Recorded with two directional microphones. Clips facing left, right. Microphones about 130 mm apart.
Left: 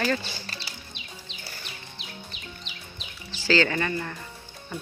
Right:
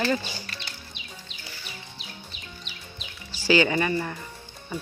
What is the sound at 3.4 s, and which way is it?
Speech, 15° right (ahead or behind).